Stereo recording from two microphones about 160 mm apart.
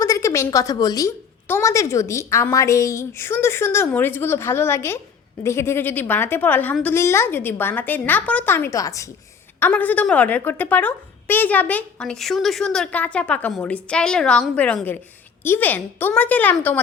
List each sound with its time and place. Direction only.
0.0 s speech: 20° left (ahead or behind)